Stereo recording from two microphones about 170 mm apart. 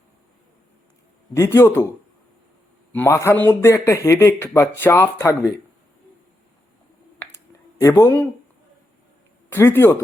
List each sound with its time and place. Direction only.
1.3 s speech: 15° left (ahead or behind)
2.9 s speech: 15° left (ahead or behind)
7.8 s speech: 20° left (ahead or behind)
9.5 s speech: 15° left (ahead or behind)